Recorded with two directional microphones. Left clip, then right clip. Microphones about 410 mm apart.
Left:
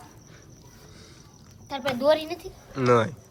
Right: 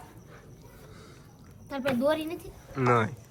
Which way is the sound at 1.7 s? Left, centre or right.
Left.